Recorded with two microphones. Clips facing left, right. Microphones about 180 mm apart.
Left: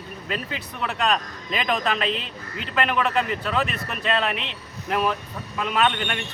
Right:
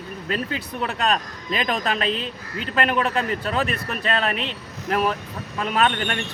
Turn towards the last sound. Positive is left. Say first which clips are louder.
# right 1 dB
turn(degrees=-45)  # may be behind; listen again after turning